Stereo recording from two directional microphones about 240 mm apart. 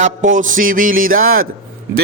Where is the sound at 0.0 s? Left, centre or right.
Right.